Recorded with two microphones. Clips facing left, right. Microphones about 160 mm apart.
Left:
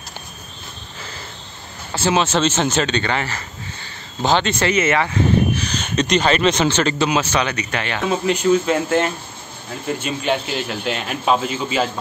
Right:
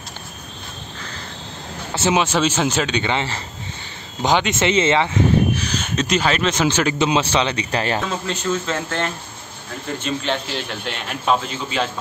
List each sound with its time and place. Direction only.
2.0 s a man's voice: 15° right (ahead or behind)
5.6 s speech: 5° right (ahead or behind)
7.1 s speech: 25° right (ahead or behind)
8.1 s a man's voice: 15° left (ahead or behind)